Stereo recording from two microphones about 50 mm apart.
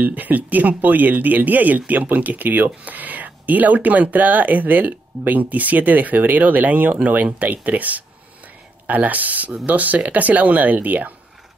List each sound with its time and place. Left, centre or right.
0.0 s speech: right